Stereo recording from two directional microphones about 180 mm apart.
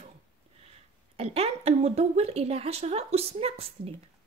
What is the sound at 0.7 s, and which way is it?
Speech, 35° right (ahead or behind).